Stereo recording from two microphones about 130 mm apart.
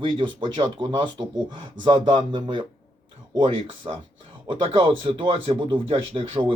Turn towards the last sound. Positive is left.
turn(degrees=-40)  # may be behind; listen again after turning